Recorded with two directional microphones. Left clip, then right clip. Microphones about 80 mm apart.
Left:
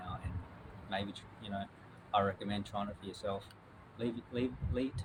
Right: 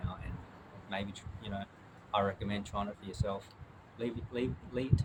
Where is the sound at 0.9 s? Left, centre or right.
Right.